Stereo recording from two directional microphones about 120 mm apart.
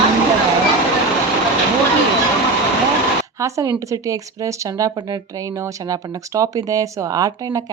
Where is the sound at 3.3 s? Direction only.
25° right (ahead or behind).